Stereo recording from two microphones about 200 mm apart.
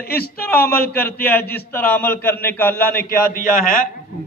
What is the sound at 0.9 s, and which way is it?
A man's voice, 10° left (ahead or behind).